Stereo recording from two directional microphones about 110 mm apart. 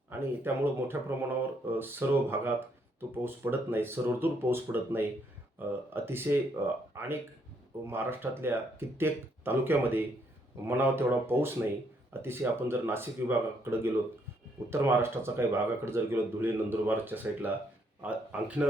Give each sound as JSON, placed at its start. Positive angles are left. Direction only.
{"t": 0.1, "sound": "speech", "side_deg": -20}